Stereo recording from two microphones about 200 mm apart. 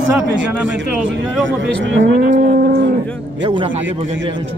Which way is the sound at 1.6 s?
65° right (ahead or behind).